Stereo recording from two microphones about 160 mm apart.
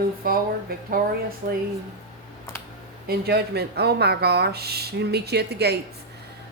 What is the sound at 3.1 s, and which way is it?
Speech, 85° right.